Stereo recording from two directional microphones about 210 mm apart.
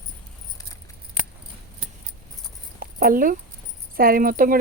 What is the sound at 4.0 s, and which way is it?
Speech, 45° right (ahead or behind).